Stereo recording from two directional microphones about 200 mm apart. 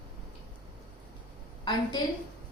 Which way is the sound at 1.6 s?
20° left (ahead or behind).